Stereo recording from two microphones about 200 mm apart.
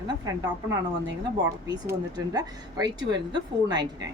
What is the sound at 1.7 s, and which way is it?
Speech, 20° right (ahead or behind).